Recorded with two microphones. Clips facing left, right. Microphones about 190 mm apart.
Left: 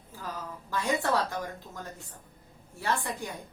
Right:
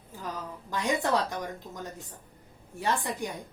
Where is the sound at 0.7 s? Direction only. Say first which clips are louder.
Right 1 dB; 20° right (ahead or behind).